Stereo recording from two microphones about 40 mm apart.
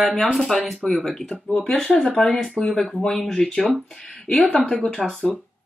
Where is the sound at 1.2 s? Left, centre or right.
Left.